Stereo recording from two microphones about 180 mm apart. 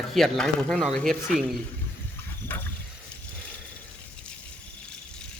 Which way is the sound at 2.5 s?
10° left (ahead or behind).